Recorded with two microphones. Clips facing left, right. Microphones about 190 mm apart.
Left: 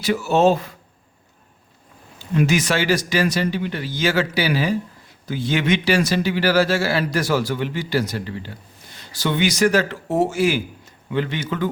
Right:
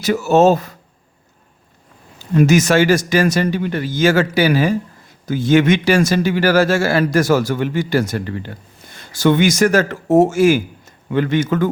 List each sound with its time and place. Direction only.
0.0 s a man's voice: 45° right (ahead or behind)
2.3 s a man's voice: 45° right (ahead or behind)